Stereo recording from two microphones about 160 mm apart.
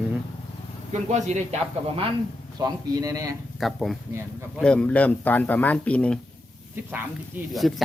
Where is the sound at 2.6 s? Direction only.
20° right (ahead or behind).